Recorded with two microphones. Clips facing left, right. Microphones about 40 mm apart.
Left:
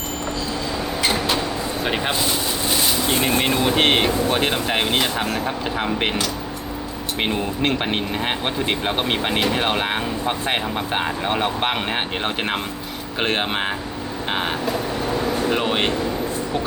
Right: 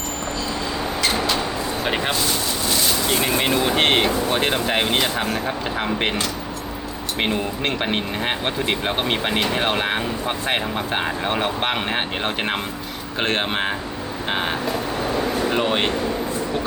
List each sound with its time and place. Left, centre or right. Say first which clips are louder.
1.8 s speech: even; centre
2.6 s vehicle: even; centre
3.4 s speech: even; centre